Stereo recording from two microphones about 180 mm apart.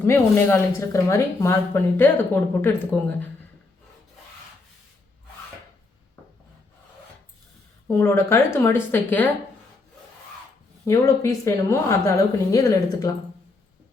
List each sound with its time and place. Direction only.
0.0 s speech: 15° left (ahead or behind)
7.9 s speech: 15° left (ahead or behind)
10.8 s speech: 15° left (ahead or behind)